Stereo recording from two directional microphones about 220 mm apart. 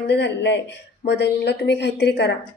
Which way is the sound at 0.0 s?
50° left (ahead or behind).